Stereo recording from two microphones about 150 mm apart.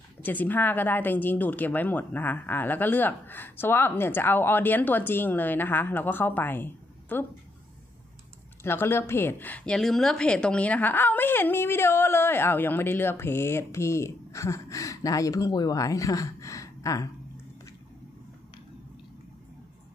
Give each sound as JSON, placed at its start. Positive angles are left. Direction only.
{"t": 0.2, "sound": "a woman's voice", "side_deg": 10}
{"t": 8.6, "sound": "a woman's voice", "side_deg": 15}